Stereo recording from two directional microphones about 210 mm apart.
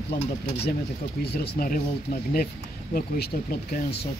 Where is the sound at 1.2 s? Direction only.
45° left (ahead or behind).